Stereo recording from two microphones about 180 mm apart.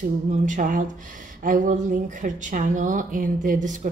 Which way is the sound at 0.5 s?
45° right (ahead or behind).